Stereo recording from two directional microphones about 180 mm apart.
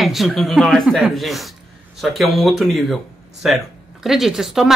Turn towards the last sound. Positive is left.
turn(degrees=0)  # may be behind; listen again after turning